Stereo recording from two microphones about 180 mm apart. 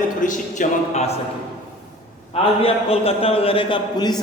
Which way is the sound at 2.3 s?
30° left (ahead or behind).